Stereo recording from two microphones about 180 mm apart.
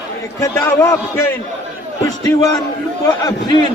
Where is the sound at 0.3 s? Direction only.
15° left (ahead or behind).